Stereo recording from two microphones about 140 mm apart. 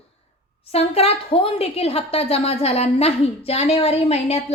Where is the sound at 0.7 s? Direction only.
45° left (ahead or behind).